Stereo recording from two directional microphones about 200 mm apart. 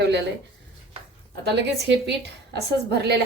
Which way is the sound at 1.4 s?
60° right (ahead or behind).